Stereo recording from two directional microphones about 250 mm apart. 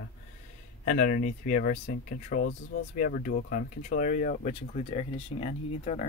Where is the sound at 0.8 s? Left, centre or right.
Left.